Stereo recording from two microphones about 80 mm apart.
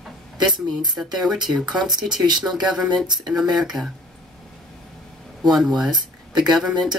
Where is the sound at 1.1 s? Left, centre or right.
Centre.